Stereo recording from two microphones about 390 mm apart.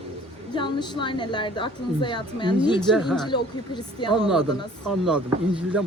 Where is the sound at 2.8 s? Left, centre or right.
Centre.